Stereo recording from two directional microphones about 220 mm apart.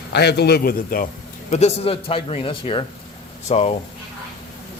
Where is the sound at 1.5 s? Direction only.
30° left (ahead or behind).